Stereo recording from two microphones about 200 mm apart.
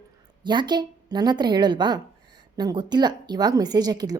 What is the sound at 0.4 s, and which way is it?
A woman's voice, 20° right (ahead or behind).